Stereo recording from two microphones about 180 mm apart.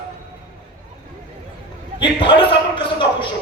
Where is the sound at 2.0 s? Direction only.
30° left (ahead or behind).